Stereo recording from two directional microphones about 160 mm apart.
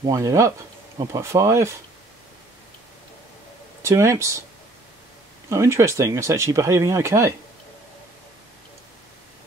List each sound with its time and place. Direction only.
0.0 s speech: 20° right (ahead or behind)
3.8 s speech: 20° right (ahead or behind)
5.5 s speech: 20° right (ahead or behind)